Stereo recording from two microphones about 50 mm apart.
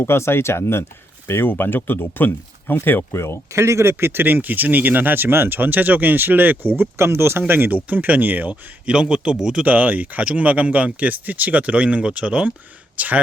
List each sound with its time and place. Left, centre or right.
0.0 s speech: left
1.3 s speech: left
3.1 s speech: left
3.5 s speech: right
6.9 s speech: right
7.9 s speech: right
8.9 s speech: centre
9.6 s speech: right